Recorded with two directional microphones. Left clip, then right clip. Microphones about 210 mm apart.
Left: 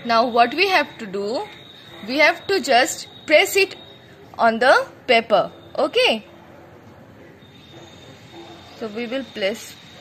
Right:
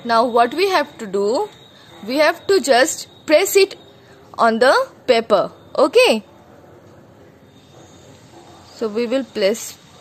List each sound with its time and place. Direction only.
0.0 s a woman's voice: 35° right (ahead or behind)
8.7 s a woman's voice: 50° right (ahead or behind)